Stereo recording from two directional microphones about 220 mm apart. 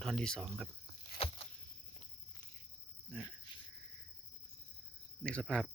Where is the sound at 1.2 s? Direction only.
25° left (ahead or behind).